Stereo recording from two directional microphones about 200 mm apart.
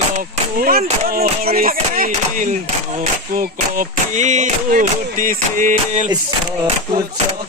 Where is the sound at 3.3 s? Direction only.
40° right (ahead or behind).